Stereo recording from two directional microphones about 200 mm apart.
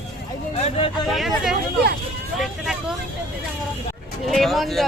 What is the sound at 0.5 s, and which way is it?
Speech, 30° left (ahead or behind).